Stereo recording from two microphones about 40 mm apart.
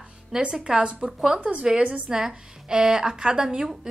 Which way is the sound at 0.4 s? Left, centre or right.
Right.